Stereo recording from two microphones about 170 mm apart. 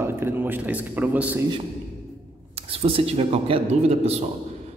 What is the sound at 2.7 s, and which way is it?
A man's voice, 35° right (ahead or behind).